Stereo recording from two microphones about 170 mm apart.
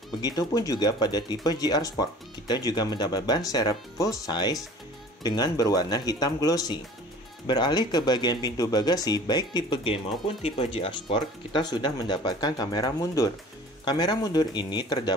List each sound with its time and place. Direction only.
0.2 s speech: 20° left (ahead or behind)